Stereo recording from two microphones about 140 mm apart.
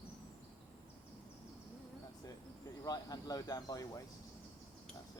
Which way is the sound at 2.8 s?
25° left (ahead or behind).